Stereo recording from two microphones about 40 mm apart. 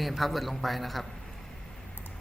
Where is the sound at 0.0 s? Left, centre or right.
Centre.